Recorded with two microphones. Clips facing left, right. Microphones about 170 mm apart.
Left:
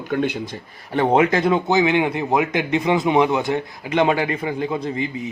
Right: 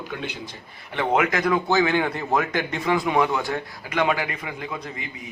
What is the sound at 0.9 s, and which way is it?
Speech, 35° left (ahead or behind).